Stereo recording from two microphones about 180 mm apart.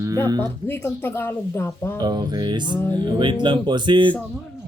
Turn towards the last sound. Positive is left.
turn(degrees=-25)  # may be behind; listen again after turning